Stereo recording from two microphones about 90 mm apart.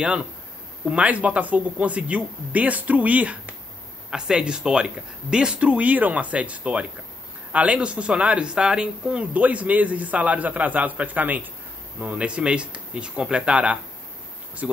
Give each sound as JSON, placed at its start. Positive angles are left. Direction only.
{"t": 0.0, "sound": "speech", "side_deg": -10}